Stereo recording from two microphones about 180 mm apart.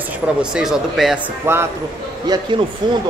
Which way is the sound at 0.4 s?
5° right (ahead or behind).